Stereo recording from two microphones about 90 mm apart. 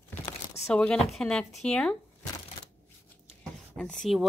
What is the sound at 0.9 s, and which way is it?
Speech, 5° left (ahead or behind).